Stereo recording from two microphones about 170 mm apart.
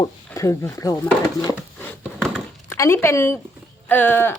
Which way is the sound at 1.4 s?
20° left (ahead or behind).